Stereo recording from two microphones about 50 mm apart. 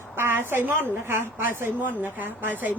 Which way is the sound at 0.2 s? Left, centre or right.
Right.